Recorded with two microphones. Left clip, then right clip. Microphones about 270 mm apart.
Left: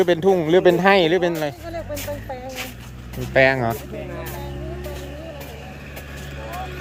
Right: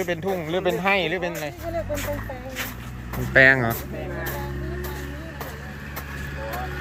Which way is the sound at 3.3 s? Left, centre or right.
Centre.